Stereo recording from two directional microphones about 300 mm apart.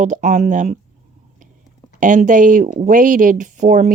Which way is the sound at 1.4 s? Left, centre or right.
Right.